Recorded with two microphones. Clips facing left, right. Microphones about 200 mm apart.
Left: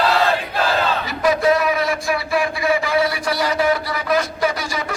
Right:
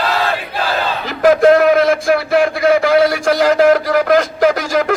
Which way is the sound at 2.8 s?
90° right.